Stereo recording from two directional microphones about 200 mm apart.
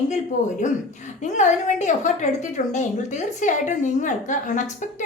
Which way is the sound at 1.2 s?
35° left (ahead or behind).